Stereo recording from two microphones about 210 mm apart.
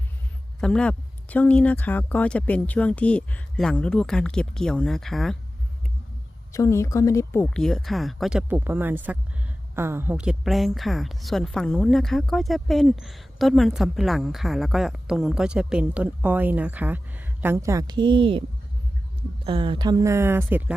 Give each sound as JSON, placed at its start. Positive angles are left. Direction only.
{"t": 0.6, "sound": "a woman's voice", "side_deg": 5}
{"t": 6.5, "sound": "a woman's voice", "side_deg": 15}
{"t": 19.5, "sound": "speech", "side_deg": -25}